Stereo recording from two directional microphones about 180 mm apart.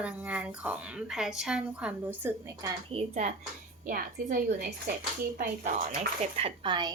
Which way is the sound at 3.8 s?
50° right (ahead or behind).